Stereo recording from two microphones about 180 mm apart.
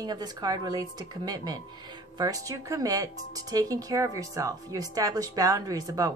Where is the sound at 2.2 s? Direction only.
20° right (ahead or behind).